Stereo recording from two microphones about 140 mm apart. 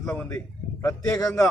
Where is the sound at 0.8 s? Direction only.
20° left (ahead or behind).